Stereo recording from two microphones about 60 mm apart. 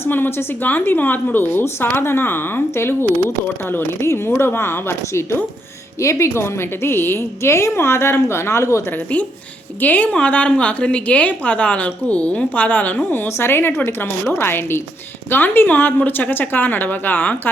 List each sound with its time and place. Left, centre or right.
0.0 s a woman's voice: left
4.0 s a woman's voice: left
4.4 s a woman's voice: left
6.0 s a woman's voice: left
9.8 s a woman's voice: left
13.2 s a woman's voice: left